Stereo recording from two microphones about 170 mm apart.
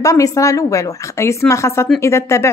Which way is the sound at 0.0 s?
20° left (ahead or behind).